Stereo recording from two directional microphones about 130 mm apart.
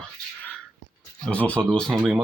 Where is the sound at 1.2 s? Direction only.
10° left (ahead or behind).